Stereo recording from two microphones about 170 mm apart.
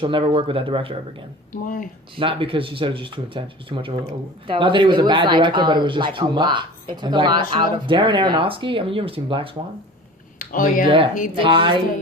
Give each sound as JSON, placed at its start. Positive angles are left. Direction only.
{"t": 0.0, "sound": "speech", "side_deg": -30}
{"t": 1.6, "sound": "speech", "side_deg": 50}
{"t": 2.1, "sound": "speech", "side_deg": -30}
{"t": 10.3, "sound": "a sound", "side_deg": 55}
{"t": 10.8, "sound": "speech", "side_deg": -30}